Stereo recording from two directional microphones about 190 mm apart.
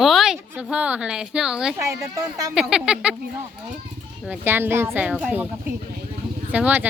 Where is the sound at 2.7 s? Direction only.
5° right (ahead or behind).